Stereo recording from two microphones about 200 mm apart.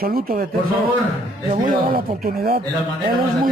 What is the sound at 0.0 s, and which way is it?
Speech, 45° right (ahead or behind).